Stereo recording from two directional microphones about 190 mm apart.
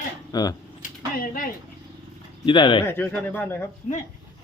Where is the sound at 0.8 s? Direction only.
45° left (ahead or behind).